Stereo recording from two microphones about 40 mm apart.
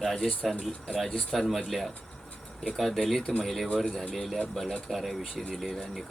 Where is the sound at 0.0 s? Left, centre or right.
Centre.